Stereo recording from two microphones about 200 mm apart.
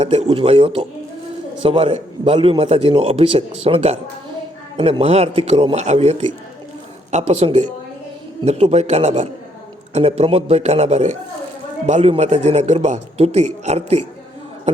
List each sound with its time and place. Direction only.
0.0 s a man's voice: 35° right (ahead or behind)